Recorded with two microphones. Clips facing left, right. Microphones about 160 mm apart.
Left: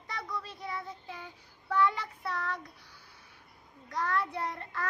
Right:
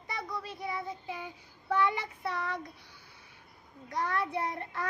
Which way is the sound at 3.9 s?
20° right (ahead or behind).